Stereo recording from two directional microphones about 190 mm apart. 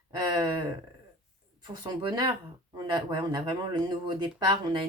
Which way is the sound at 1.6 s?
25° right (ahead or behind).